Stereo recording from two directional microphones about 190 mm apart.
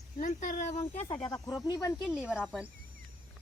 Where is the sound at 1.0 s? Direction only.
20° left (ahead or behind).